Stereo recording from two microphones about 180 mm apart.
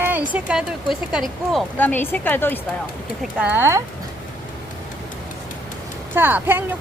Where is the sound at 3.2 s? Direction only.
10° right (ahead or behind).